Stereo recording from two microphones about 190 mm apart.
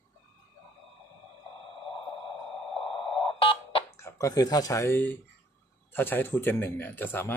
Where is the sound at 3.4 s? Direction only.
30° left (ahead or behind).